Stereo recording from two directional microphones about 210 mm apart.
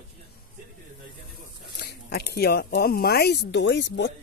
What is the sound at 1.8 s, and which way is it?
Speech, 50° left (ahead or behind).